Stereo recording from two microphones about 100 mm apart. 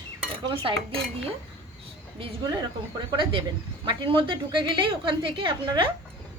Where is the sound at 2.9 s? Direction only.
50° right (ahead or behind).